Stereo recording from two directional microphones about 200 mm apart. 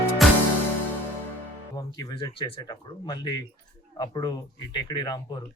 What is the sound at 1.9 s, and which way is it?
Speech, 20° left (ahead or behind).